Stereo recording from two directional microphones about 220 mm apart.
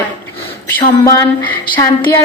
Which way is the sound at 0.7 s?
10° left (ahead or behind).